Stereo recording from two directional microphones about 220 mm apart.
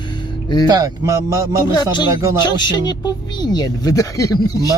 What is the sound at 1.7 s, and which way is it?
Speech, 20° left (ahead or behind).